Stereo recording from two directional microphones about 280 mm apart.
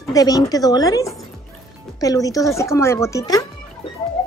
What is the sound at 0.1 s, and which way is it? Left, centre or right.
Speech, centre.